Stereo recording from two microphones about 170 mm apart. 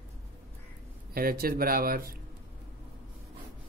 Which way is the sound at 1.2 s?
60° right (ahead or behind).